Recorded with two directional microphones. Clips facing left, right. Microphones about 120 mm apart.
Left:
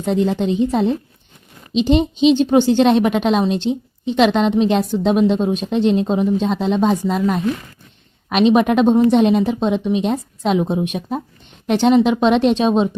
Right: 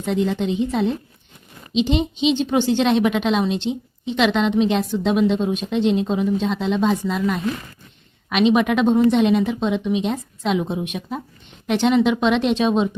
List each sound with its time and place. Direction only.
0.0 s a woman's voice: 40° left (ahead or behind)